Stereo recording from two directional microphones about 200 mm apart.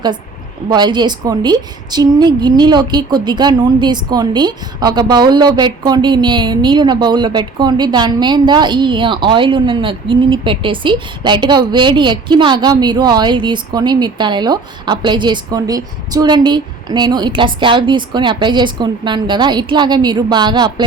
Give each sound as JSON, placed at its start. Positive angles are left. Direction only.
{"t": 0.7, "sound": "a woman's voice", "side_deg": -20}